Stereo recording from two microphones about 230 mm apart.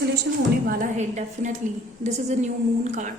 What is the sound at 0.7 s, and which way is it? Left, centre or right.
A woman's voice, right.